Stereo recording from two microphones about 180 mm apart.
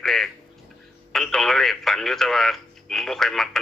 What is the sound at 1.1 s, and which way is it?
Telephone, centre (ahead or behind).